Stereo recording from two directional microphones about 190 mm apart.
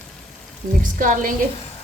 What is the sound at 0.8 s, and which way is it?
Speech, 45° right (ahead or behind).